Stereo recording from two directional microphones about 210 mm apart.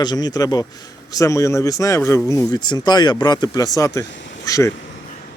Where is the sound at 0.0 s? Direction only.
20° left (ahead or behind).